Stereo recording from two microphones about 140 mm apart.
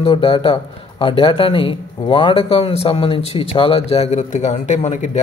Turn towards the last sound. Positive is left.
turn(degrees=55)  # may be behind; listen again after turning